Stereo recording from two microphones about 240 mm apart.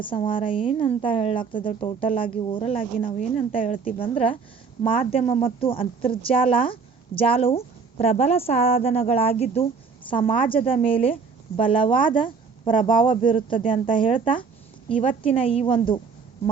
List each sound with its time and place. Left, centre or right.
0.0 s a woman's voice: left